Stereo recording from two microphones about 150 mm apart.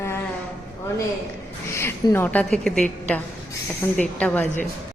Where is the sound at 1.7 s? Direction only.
15° left (ahead or behind).